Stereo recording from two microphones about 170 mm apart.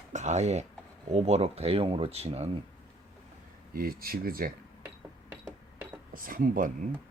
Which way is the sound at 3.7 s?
60° right (ahead or behind).